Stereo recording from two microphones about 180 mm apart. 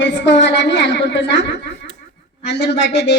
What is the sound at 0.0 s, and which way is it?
A woman's voice, 85° left.